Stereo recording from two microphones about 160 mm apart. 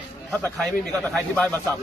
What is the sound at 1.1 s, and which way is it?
Speech, 10° left (ahead or behind).